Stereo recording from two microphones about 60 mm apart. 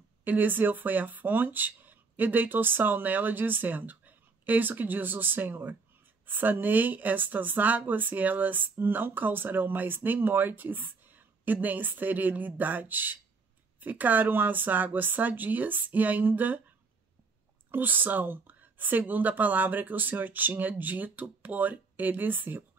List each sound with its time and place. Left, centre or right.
0.2 s speech: right
17.6 s speech: right